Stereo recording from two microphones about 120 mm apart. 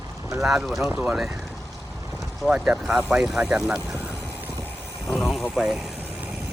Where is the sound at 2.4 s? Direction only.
10° right (ahead or behind).